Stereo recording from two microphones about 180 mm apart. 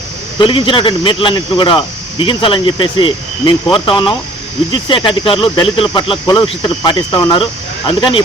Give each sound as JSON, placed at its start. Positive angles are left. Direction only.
{"t": 0.3, "sound": "speech", "side_deg": 30}